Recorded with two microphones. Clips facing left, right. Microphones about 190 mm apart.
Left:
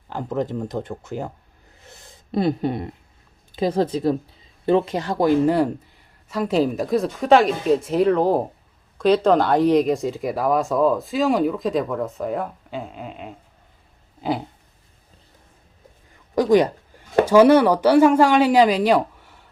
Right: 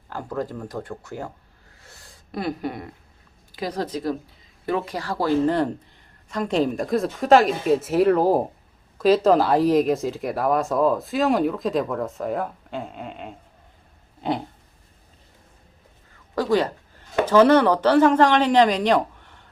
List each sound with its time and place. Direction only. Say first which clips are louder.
0.1 s speech: left 4 dB; 20° left (ahead or behind)
1.8 s gasp: left 4 dB; 20° left (ahead or behind)
3.5 s speech: left 7 dB; 25° left (ahead or behind); by 13.3 s centre (ahead or behind)
14.2 s a sound: left 1 dB; centre (ahead or behind)
16.3 s speech: left 5 dB; 15° left (ahead or behind)